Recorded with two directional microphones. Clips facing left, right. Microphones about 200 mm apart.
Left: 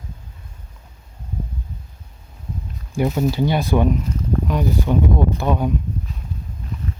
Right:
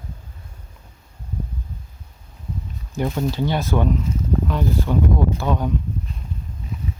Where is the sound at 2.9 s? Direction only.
10° left (ahead or behind).